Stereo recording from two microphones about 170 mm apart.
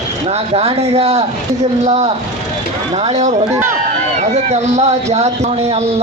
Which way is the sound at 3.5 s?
15° right (ahead or behind).